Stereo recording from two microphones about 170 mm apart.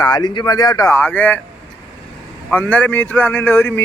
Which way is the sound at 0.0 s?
25° left (ahead or behind).